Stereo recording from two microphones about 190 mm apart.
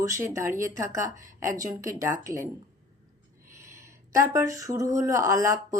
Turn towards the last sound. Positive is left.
turn(degrees=-15)  # may be behind; listen again after turning